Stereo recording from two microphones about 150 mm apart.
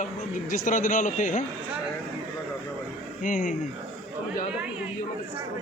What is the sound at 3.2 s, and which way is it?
Speech, 60° left (ahead or behind).